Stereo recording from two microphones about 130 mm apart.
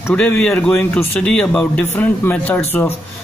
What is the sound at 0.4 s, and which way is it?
Speech, 10° left (ahead or behind).